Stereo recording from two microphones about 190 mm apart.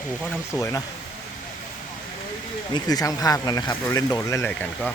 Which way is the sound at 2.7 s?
20° left (ahead or behind).